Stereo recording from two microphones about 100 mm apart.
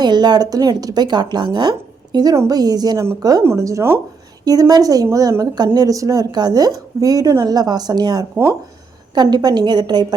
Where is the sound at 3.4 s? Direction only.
30° right (ahead or behind).